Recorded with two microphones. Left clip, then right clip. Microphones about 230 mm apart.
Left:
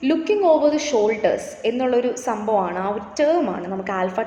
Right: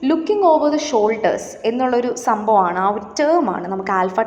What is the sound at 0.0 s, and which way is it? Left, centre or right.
A woman's voice, centre.